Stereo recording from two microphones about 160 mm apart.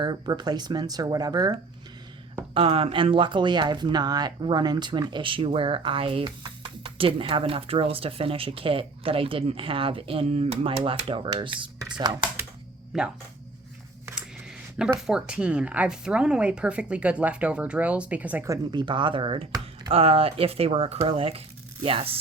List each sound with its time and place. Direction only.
0.0 s speech: 25° right (ahead or behind)
2.6 s speech: 35° right (ahead or behind)
12.9 s speech: centre (ahead or behind)
14.8 s speech: 5° right (ahead or behind); by 22.2 s 35° right (ahead or behind)